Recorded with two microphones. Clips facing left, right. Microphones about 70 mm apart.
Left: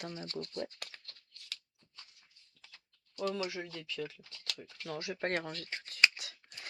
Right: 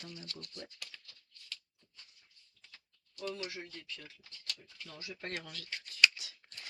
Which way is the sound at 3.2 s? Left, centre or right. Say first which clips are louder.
Left 5 dB; left.